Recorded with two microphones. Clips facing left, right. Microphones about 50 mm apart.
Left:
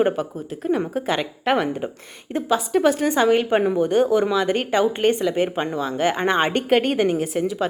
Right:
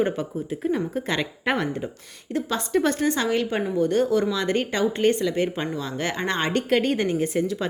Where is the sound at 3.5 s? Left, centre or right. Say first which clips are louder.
Left 6 dB; left.